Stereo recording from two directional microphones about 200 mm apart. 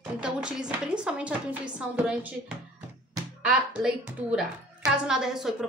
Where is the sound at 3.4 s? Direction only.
5° right (ahead or behind).